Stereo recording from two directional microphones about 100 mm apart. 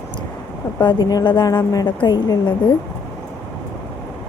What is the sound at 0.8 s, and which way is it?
Speech, 45° left (ahead or behind).